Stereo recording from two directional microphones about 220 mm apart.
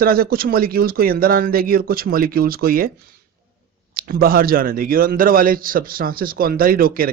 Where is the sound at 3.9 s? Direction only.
40° right (ahead or behind).